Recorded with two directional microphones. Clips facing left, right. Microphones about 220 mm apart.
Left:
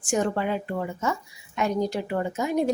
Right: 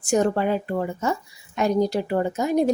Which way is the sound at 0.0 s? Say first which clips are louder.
Right 4 dB; 40° right (ahead or behind).